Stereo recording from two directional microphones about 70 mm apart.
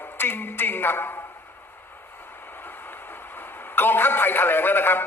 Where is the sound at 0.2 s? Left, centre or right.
Left.